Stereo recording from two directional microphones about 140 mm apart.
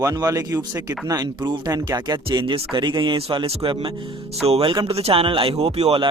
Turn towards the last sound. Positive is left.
turn(degrees=-45)  # may be behind; listen again after turning